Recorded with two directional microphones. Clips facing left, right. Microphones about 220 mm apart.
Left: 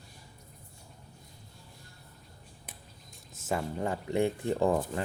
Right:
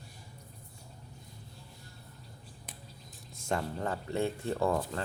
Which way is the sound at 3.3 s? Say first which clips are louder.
Left 1 dB; 5° left (ahead or behind).